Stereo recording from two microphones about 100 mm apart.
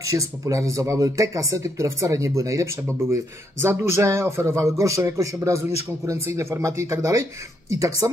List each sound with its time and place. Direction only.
0.0 s a man's voice: 35° right (ahead or behind)